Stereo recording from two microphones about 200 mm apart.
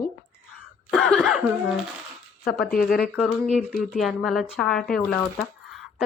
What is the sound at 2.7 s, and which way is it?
Speech, 45° left (ahead or behind).